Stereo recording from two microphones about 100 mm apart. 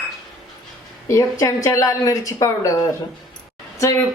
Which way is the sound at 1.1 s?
30° left (ahead or behind).